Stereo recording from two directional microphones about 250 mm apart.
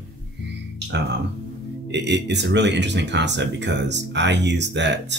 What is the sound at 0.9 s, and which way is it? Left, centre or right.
Speech, right.